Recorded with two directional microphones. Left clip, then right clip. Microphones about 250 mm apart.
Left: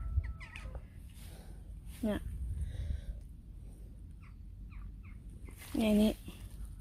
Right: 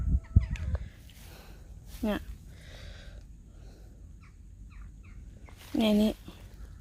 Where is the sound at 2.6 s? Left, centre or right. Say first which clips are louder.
Right 9 dB; centre.